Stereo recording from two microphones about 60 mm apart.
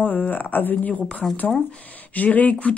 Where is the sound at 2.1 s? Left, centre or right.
Left.